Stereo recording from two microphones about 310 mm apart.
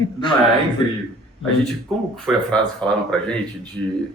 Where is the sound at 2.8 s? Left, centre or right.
Centre.